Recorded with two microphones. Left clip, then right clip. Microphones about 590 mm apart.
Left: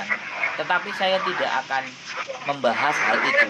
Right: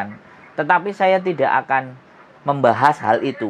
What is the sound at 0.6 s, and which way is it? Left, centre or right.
Speech, right.